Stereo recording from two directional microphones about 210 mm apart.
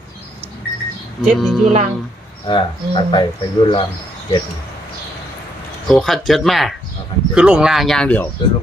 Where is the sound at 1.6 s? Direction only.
35° right (ahead or behind).